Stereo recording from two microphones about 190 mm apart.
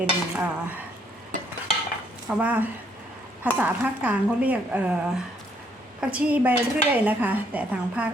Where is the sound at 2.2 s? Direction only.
5° right (ahead or behind).